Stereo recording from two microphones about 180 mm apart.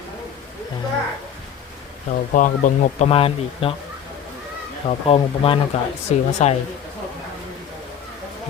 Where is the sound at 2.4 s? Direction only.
45° left (ahead or behind).